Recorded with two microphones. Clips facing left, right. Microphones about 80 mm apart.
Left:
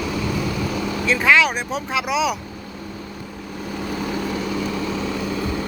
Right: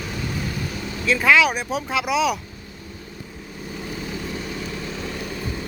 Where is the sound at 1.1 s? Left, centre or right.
Centre.